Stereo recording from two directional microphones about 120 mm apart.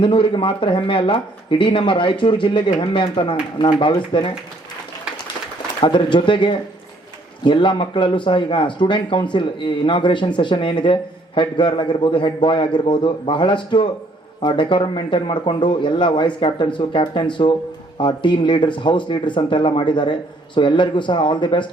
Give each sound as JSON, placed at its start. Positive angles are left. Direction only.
{"t": 0.0, "sound": "speech", "side_deg": 45}
{"t": 5.8, "sound": "speech", "side_deg": 45}